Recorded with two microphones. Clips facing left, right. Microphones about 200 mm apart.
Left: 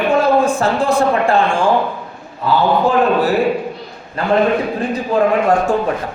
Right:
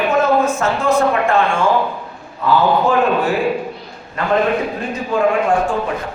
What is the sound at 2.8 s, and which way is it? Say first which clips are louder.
A man's voice: left 2 dB; 35° left (ahead or behind).